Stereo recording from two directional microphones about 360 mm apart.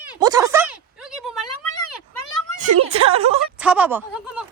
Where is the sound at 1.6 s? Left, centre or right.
Left.